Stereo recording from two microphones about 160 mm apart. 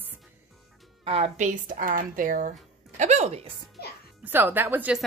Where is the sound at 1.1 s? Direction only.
45° right (ahead or behind).